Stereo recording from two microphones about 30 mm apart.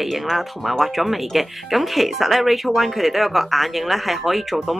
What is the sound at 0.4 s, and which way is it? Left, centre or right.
Speech, centre.